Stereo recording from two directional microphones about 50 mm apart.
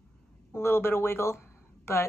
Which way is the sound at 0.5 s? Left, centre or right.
Left.